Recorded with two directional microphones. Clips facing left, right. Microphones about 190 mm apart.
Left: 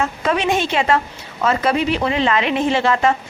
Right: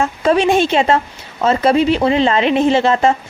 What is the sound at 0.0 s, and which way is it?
A woman's voice, 30° right (ahead or behind).